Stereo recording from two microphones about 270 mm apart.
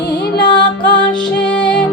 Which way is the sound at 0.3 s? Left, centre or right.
Centre.